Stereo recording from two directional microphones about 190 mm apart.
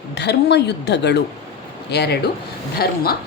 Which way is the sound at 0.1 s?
65° left (ahead or behind).